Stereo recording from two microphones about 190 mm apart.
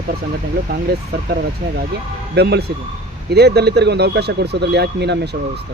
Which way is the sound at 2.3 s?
60° right (ahead or behind).